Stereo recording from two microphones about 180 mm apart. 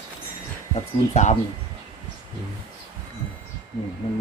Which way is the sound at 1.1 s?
40° left (ahead or behind).